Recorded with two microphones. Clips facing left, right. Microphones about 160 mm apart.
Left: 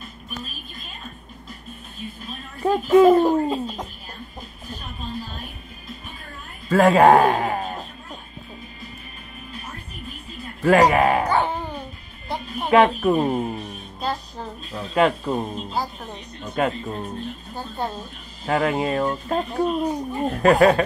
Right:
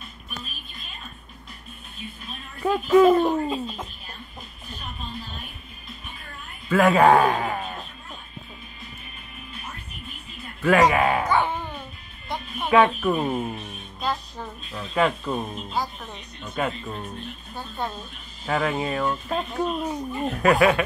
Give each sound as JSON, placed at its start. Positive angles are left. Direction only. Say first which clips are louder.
{"t": 2.6, "sound": "speech", "louder": "left 2 dB", "side_deg": 35}
{"t": 6.7, "sound": "a man's voice", "louder": "left 3 dB", "side_deg": 35}
{"t": 10.6, "sound": "music", "louder": "left 3 dB", "side_deg": 40}
{"t": 12.3, "sound": "speech", "louder": "left 3 dB", "side_deg": 35}
{"t": 14.7, "sound": "speech", "louder": "left 4 dB", "side_deg": 40}
{"t": 18.4, "sound": "speech", "louder": "left 3 dB", "side_deg": 40}